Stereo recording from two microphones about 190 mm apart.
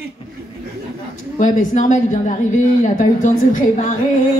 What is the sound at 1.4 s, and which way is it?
Speech, 40° left (ahead or behind).